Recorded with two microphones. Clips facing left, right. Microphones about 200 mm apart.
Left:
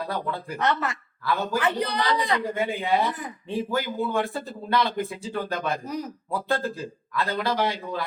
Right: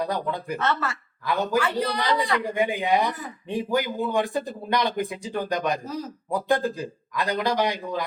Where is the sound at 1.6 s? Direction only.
20° left (ahead or behind).